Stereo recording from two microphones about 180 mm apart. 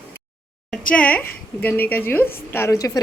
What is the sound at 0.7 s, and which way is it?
A woman's voice, 5° left (ahead or behind).